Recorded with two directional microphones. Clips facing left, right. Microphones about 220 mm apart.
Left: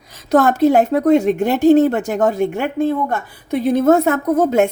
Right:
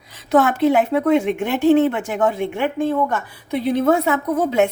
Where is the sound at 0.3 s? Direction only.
40° left (ahead or behind).